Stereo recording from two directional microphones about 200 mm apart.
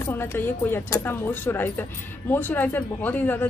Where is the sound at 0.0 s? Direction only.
10° left (ahead or behind).